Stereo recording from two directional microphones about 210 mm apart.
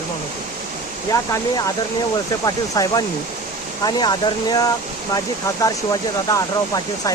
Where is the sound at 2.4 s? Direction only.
15° left (ahead or behind).